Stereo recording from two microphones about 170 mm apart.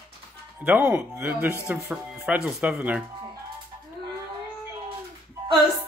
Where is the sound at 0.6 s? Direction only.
10° right (ahead or behind).